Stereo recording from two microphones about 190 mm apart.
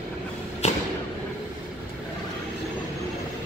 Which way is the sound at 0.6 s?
35° left (ahead or behind).